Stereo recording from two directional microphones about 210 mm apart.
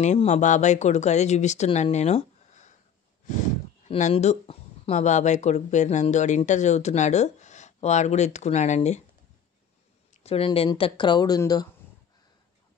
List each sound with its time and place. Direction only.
0.0 s speech: 35° left (ahead or behind)
3.8 s speech: 30° left (ahead or behind)
10.1 s speech: 30° left (ahead or behind)